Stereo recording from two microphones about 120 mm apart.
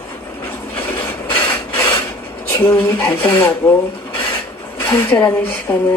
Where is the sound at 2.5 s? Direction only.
20° left (ahead or behind).